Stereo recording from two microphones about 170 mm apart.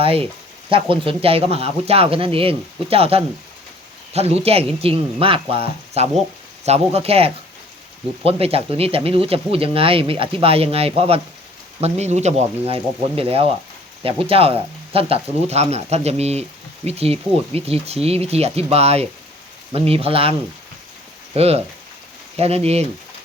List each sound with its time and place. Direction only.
0.0 s speech: 35° right (ahead or behind)
21.3 s speech: 35° right (ahead or behind)